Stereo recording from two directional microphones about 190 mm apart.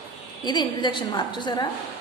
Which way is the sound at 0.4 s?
25° left (ahead or behind).